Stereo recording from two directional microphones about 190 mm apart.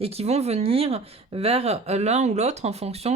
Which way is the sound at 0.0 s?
35° right (ahead or behind).